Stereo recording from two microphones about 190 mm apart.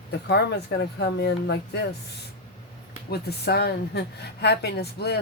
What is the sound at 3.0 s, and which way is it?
A woman's voice, 60° left (ahead or behind).